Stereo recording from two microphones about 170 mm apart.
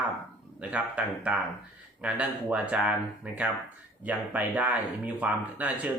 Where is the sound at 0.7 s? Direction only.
10° right (ahead or behind).